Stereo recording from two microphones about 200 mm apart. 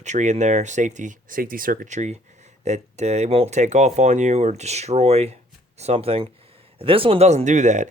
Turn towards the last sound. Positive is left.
turn(degrees=-35)  # may be behind; listen again after turning